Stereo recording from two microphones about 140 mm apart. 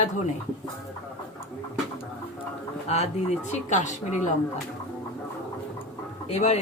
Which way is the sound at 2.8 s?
50° left (ahead or behind).